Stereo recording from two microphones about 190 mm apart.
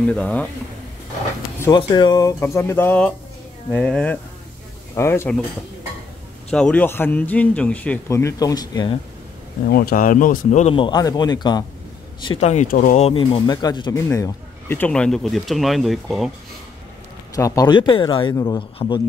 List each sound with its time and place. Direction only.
0.1 s speech: 5° left (ahead or behind)
1.6 s speech: 20° left (ahead or behind)
6.5 s speech: 5° left (ahead or behind); by 8.9 s 20° left (ahead or behind)
9.7 s speech: 55° left (ahead or behind); by 11.6 s 20° left (ahead or behind)
12.3 s speech: 35° left (ahead or behind); by 16.3 s centre (ahead or behind)
17.4 s speech: 20° left (ahead or behind)